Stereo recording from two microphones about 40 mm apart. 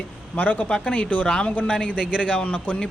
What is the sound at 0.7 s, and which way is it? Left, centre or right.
Speech, left.